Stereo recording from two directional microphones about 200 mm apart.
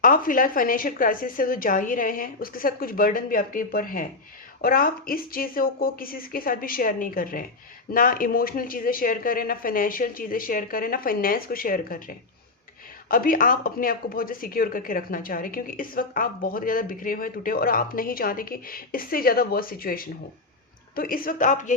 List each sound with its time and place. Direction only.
0.0 s speech: 45° left (ahead or behind)